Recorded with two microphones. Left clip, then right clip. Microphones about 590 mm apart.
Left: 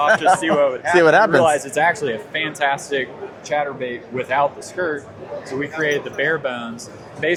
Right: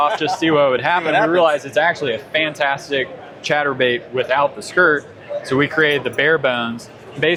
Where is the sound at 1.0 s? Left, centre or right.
Left.